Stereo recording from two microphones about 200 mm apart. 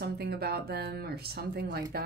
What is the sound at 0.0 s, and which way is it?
Speech, 55° right (ahead or behind).